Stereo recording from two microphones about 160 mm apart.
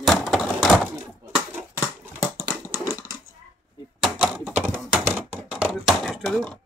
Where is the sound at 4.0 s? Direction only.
Centre (ahead or behind).